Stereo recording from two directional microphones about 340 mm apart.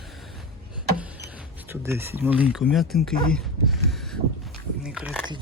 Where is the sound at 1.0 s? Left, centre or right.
Centre.